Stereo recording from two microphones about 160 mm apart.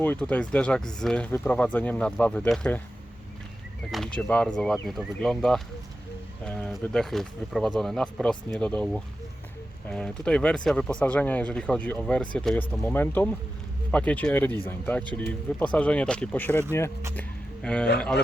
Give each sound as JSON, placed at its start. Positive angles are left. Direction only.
{"t": 0.0, "sound": "speech", "side_deg": 10}
{"t": 3.9, "sound": "speech", "side_deg": 5}
{"t": 17.2, "sound": "music", "side_deg": 5}